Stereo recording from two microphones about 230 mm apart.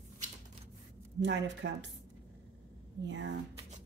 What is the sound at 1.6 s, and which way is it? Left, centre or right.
Speech, right.